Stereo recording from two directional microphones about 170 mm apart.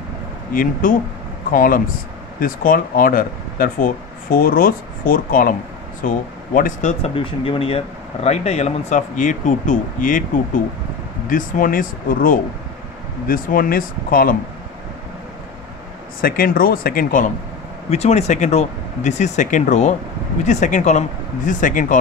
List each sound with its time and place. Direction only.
0.5 s speech: 55° left (ahead or behind)
16.2 s speech: 60° left (ahead or behind)
17.8 s speech: 40° left (ahead or behind)